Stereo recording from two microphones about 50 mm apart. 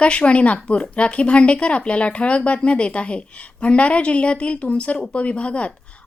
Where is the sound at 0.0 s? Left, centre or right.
Left.